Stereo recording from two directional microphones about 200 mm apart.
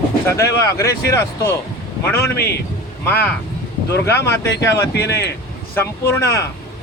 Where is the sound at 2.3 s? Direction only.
50° left (ahead or behind).